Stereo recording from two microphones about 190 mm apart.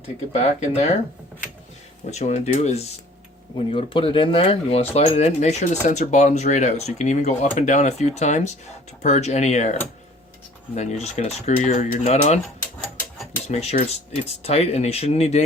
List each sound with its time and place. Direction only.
0.3 s speech: 35° left (ahead or behind)
2.0 s speech: 35° left (ahead or behind)
10.8 s speech: 35° left (ahead or behind)
13.5 s speech: 35° left (ahead or behind)